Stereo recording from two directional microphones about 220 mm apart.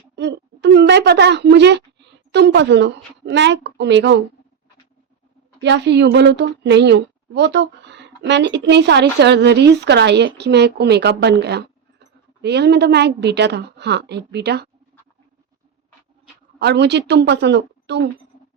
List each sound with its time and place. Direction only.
0.2 s a woman's voice: 50° right (ahead or behind)
5.5 s a woman's voice: 50° right (ahead or behind)
16.6 s a woman's voice: 50° right (ahead or behind)